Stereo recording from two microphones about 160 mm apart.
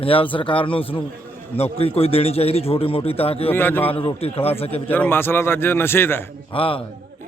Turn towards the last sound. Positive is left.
turn(degrees=35)  # may be behind; listen again after turning